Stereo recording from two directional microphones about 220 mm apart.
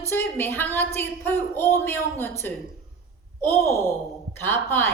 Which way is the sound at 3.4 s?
10° left (ahead or behind).